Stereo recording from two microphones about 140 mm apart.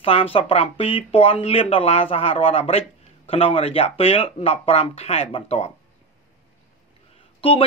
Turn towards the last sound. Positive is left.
turn(degrees=40)  # may be behind; listen again after turning